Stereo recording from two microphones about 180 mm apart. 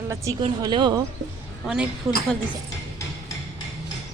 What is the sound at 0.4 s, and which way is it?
Speech, 25° right (ahead or behind).